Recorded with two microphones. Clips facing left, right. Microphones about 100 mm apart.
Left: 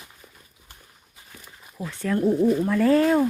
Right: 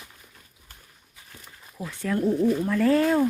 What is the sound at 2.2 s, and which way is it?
Speech, 25° left (ahead or behind).